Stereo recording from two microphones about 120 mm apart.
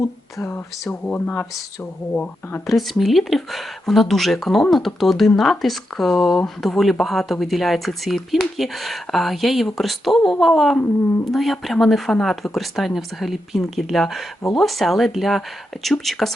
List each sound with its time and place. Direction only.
0.3 s speech: 20° left (ahead or behind)
2.6 s speech: centre (ahead or behind)